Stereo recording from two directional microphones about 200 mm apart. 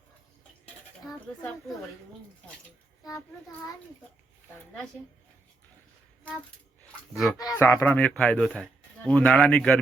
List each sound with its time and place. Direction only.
7.3 s speech: 15° left (ahead or behind)